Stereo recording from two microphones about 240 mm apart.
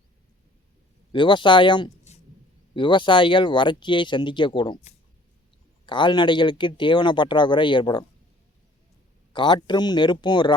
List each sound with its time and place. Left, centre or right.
1.1 s speech: centre
9.3 s speech: centre